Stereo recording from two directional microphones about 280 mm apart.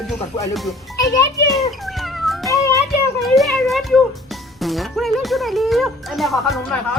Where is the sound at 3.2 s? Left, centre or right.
Centre.